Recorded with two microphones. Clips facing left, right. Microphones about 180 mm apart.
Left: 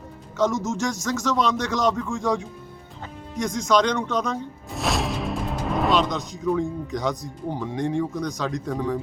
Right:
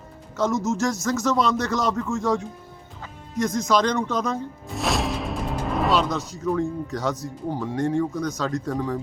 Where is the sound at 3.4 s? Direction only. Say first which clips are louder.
Even; 5° right (ahead or behind).